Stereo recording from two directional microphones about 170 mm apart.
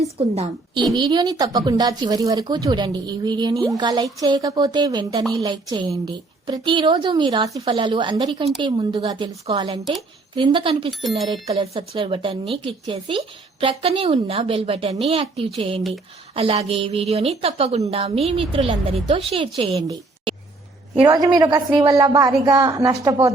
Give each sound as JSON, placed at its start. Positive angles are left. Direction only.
{"t": 0.2, "sound": "a woman's voice", "side_deg": -30}
{"t": 21.3, "sound": "a woman's voice", "side_deg": -25}